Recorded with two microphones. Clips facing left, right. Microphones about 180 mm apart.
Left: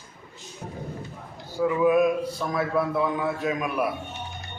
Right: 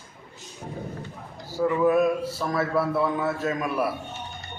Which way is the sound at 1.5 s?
5° left (ahead or behind).